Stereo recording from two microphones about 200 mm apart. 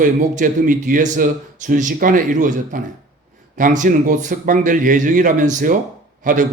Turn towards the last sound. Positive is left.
turn(degrees=-40)  # may be behind; listen again after turning